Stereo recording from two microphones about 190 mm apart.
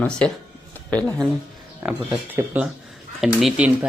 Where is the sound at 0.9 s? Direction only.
5° left (ahead or behind).